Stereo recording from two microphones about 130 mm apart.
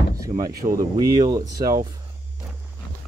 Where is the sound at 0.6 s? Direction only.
50° right (ahead or behind).